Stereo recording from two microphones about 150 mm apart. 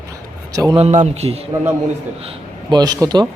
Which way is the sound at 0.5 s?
25° right (ahead or behind).